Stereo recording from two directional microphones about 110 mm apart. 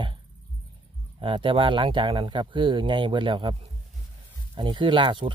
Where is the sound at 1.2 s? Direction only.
50° right (ahead or behind).